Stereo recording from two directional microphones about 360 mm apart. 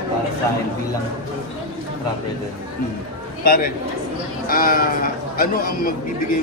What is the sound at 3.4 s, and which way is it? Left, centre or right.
Speech, left.